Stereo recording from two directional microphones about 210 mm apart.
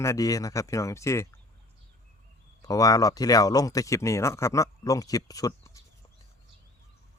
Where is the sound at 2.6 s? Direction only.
15° left (ahead or behind).